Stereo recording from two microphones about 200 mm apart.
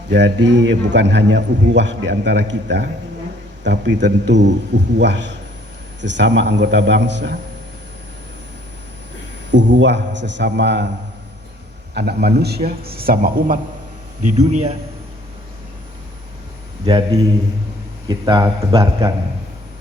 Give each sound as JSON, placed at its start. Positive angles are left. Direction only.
{"t": 0.1, "sound": "a man's voice", "side_deg": -60}
{"t": 9.5, "sound": "a man's voice", "side_deg": -65}
{"t": 11.9, "sound": "a man's voice", "side_deg": -55}
{"t": 14.3, "sound": "a man's voice", "side_deg": -35}
{"t": 16.8, "sound": "a man's voice", "side_deg": -20}
{"t": 18.3, "sound": "a man's voice", "side_deg": -20}